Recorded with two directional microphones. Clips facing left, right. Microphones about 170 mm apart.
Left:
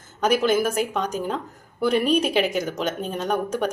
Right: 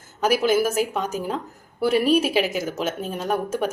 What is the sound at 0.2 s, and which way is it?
Speech, 5° right (ahead or behind).